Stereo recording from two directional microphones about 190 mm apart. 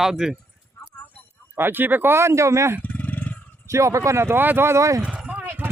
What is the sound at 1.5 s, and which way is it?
Speech, 10° right (ahead or behind).